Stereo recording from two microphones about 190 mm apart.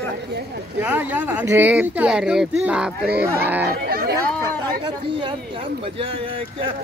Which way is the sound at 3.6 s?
55° right (ahead or behind).